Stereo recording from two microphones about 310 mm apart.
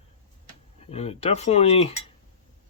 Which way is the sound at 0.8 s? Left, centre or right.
Centre.